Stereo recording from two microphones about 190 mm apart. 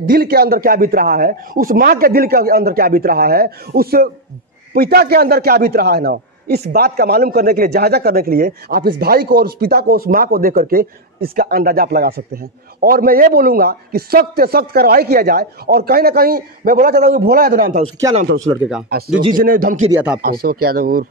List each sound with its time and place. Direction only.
0.0 s a man's voice: 50° right (ahead or behind)
18.6 s speech: 5° right (ahead or behind)
18.9 s a man's voice: 55° right (ahead or behind)
19.9 s speech: 10° right (ahead or behind)
20.2 s a man's voice: 50° right (ahead or behind)